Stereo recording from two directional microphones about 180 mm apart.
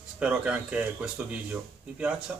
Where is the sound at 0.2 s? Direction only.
5° right (ahead or behind).